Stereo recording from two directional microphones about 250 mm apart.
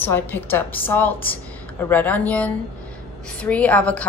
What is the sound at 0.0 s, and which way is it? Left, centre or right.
A woman's voice, centre.